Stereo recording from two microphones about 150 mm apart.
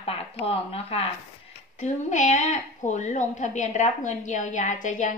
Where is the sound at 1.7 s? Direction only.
55° left (ahead or behind).